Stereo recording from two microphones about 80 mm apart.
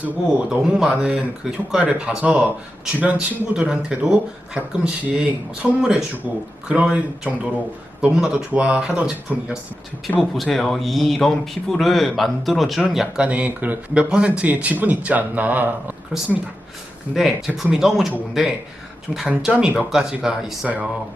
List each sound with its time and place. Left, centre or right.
0.6 s speech: centre
13.2 s speech: centre
17.2 s speech: centre